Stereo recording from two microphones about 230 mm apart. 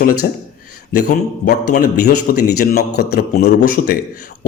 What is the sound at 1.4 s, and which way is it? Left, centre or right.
Speech, left.